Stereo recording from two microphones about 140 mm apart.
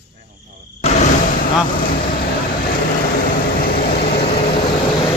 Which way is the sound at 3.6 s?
90° left.